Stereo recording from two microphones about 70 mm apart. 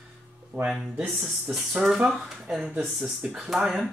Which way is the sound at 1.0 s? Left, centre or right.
Centre.